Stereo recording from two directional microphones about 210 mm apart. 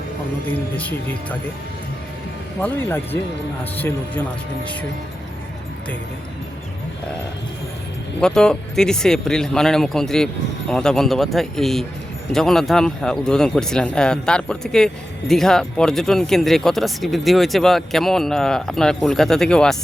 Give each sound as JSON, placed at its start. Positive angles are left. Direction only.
{"t": 0.4, "sound": "speech", "side_deg": 5}
{"t": 2.6, "sound": "speech", "side_deg": 10}
{"t": 8.2, "sound": "speech", "side_deg": 5}